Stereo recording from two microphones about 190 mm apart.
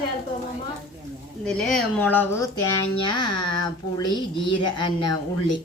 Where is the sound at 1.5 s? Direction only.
Centre (ahead or behind).